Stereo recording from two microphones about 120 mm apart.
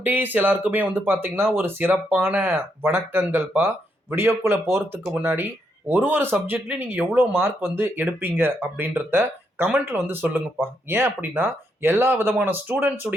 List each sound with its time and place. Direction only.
0.0 s speech: 15° right (ahead or behind)